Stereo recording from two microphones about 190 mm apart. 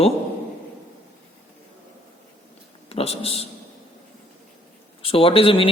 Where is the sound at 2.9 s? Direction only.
30° left (ahead or behind).